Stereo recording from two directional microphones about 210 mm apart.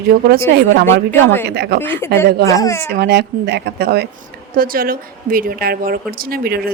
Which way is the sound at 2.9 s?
50° right (ahead or behind).